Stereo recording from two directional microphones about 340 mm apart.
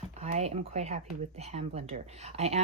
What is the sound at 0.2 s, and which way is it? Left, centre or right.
Speech, centre.